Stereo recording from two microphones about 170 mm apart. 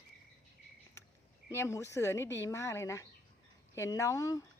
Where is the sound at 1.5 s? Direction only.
15° left (ahead or behind).